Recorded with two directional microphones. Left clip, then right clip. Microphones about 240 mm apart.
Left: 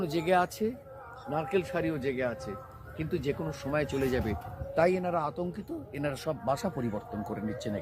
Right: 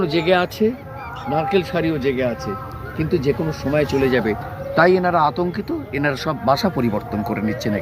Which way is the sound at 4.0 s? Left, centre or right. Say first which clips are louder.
Right 13 dB; left.